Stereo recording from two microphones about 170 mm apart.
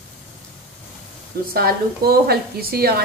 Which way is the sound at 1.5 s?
65° right (ahead or behind).